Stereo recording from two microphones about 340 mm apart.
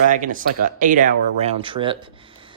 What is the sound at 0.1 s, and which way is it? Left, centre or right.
Speech, right.